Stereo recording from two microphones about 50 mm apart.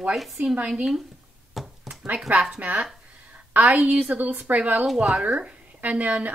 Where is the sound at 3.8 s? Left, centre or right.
Right.